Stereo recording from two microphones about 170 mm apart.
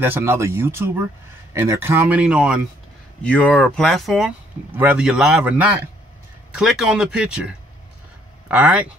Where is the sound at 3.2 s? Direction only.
5° left (ahead or behind).